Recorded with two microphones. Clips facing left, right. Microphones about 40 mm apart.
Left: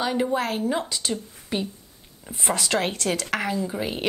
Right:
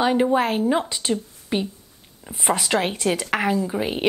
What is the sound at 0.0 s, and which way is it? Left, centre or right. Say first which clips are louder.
A woman's voice: right 5 dB; right.